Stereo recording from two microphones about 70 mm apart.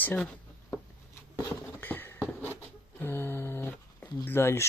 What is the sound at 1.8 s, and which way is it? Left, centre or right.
Patter, left.